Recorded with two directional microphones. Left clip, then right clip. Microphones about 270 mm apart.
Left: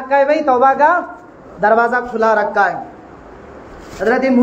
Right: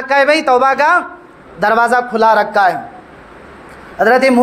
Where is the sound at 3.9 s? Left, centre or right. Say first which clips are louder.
Right 5 dB; right.